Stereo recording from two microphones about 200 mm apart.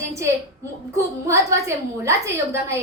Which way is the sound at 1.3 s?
15° right (ahead or behind).